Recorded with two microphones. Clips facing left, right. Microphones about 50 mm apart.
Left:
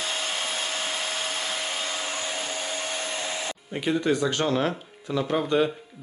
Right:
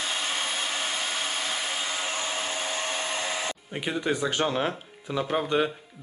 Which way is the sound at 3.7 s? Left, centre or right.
Centre.